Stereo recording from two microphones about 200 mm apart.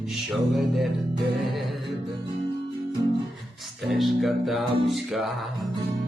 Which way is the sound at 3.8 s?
Centre (ahead or behind).